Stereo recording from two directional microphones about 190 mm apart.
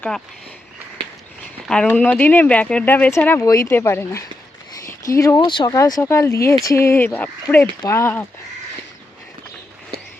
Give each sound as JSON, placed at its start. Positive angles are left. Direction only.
{"t": 1.6, "sound": "speech", "side_deg": 5}